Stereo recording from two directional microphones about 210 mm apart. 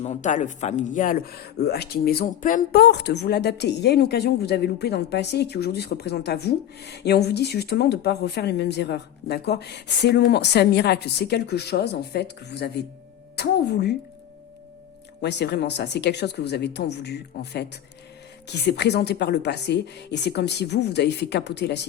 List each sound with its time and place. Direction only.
0.0 s a woman's voice: 35° left (ahead or behind); by 13.9 s 50° left (ahead or behind)
15.2 s speech: 55° left (ahead or behind)